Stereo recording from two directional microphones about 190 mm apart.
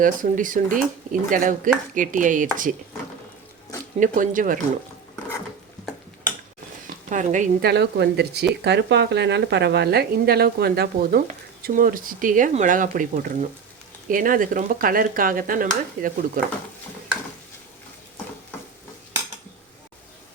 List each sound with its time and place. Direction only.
0.0 s speech: 45° right (ahead or behind)
4.0 s speech: 45° right (ahead or behind)
7.1 s a woman's voice: 40° right (ahead or behind)
7.6 s speech: 60° right (ahead or behind)